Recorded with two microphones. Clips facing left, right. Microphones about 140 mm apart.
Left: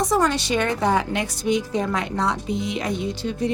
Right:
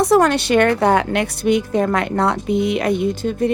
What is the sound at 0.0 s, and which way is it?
A woman's voice, 65° right (ahead or behind).